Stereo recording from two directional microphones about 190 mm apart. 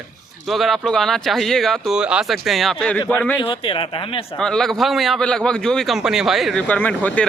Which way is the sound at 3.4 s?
25° left (ahead or behind).